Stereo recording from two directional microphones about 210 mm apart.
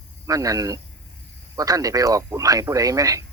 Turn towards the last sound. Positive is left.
turn(degrees=-15)  # may be behind; listen again after turning